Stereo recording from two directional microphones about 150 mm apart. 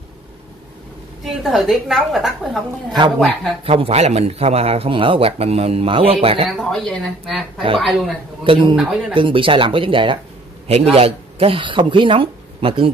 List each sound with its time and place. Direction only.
1.2 s a woman's voice: centre (ahead or behind)
3.6 s speech: 40° right (ahead or behind)
6.6 s a woman's voice: 5° left (ahead or behind)
8.5 s speech: 35° right (ahead or behind)